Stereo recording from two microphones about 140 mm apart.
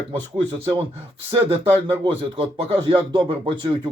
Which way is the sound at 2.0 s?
40° right (ahead or behind).